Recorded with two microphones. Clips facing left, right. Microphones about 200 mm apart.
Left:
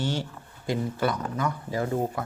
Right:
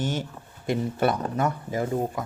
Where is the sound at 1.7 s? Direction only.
20° right (ahead or behind).